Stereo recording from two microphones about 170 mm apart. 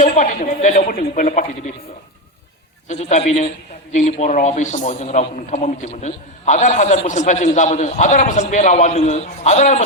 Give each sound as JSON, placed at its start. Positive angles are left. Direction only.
{"t": 0.0, "sound": "a man's voice", "side_deg": 50}
{"t": 2.9, "sound": "a man's voice", "side_deg": 40}